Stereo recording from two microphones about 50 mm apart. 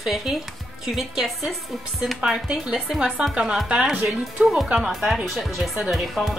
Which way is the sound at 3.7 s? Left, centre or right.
Centre.